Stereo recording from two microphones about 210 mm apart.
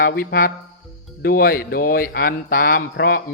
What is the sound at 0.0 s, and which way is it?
Speech, 45° left (ahead or behind).